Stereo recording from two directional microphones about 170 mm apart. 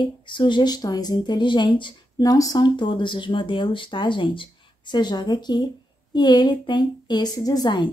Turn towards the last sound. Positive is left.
turn(degrees=25)  # may be behind; listen again after turning